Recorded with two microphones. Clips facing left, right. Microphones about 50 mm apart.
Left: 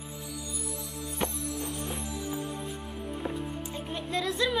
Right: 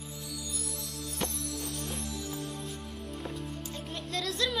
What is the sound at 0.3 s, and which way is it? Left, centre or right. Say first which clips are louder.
Music: left 2 dB; centre.